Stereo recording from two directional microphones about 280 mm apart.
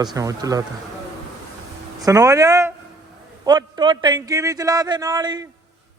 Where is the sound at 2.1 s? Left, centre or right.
Centre.